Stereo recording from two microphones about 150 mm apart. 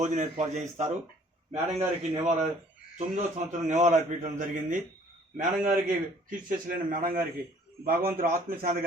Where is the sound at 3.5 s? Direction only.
50° right (ahead or behind).